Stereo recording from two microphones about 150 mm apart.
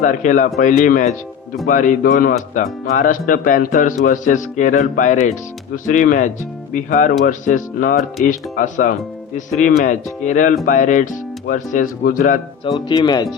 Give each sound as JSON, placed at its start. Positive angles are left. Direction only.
{"t": 0.0, "sound": "speech", "side_deg": 55}
{"t": 12.6, "sound": "speech", "side_deg": 30}